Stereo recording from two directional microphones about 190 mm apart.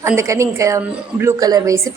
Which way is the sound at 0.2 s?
15° right (ahead or behind).